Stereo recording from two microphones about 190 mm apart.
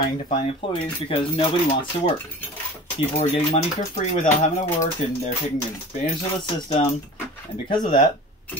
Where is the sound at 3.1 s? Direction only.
35° left (ahead or behind).